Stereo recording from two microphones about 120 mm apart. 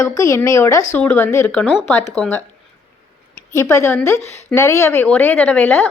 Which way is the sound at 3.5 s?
25° left (ahead or behind).